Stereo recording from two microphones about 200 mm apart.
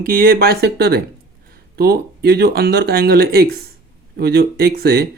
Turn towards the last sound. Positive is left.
turn(degrees=-55)  # may be behind; listen again after turning